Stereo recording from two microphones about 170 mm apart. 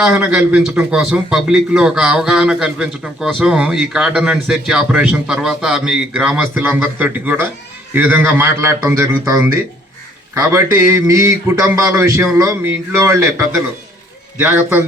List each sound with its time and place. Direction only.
0.2 s a man's voice: 5° right (ahead or behind)